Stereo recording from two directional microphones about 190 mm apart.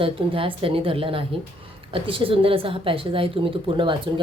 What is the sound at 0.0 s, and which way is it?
Speech, 30° right (ahead or behind).